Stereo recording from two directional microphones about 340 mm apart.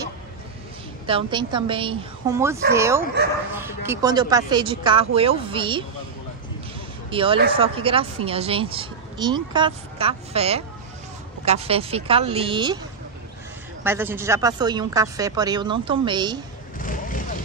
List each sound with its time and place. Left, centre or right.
1.0 s speech: centre
7.1 s speech: centre
13.8 s speech: centre
16.7 s vehicle: left